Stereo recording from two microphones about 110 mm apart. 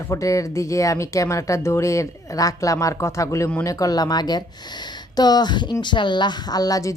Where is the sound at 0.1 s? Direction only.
30° left (ahead or behind).